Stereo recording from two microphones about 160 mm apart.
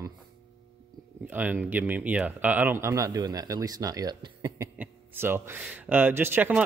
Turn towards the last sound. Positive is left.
turn(degrees=-10)  # may be behind; listen again after turning